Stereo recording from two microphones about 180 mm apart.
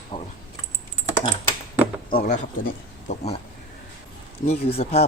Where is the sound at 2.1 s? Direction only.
45° left (ahead or behind).